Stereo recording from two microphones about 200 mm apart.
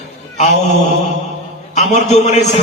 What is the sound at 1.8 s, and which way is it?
Speech, 35° left (ahead or behind).